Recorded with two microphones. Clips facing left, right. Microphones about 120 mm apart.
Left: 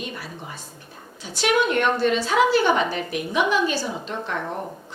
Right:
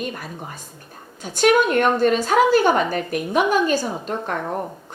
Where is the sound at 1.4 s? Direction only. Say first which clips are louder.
Right 4 dB; 45° right (ahead or behind).